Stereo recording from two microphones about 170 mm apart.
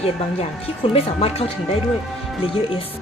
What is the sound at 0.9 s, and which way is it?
Speech, 35° left (ahead or behind).